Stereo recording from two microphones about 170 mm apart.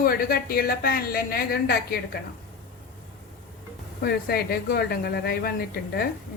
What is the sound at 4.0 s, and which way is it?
A woman's voice, 65° left (ahead or behind).